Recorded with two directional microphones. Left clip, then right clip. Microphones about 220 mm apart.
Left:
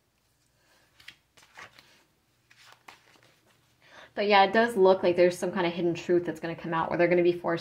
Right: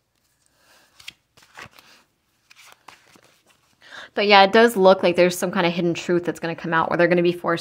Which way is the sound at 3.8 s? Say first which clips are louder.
Right 8 dB; 40° right (ahead or behind).